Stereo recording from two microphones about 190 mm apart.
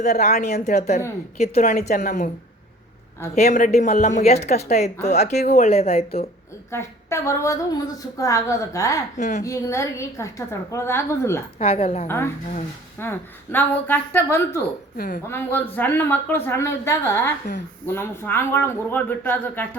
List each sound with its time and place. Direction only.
0.0 s speech: 40° left (ahead or behind)
3.3 s speech: 40° left (ahead or behind)
6.7 s a woman's voice: 15° left (ahead or behind)
9.1 s speech: 40° left (ahead or behind)
9.4 s a woman's voice: 15° left (ahead or behind)
11.6 s speech: 35° left (ahead or behind)
12.0 s a woman's voice: 15° left (ahead or behind)
14.9 s a woman's voice: 50° left (ahead or behind)
15.3 s a woman's voice: 10° left (ahead or behind)